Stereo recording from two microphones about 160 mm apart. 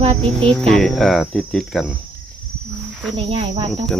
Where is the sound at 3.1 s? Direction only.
35° right (ahead or behind).